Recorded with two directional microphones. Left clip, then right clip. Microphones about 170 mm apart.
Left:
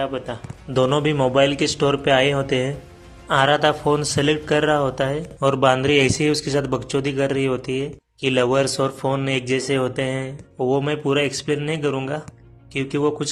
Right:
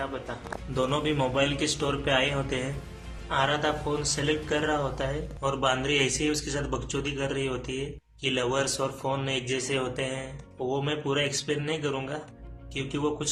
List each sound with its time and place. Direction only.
0.7 s a man's voice: 40° left (ahead or behind)
3.2 s a man's voice: 55° left (ahead or behind)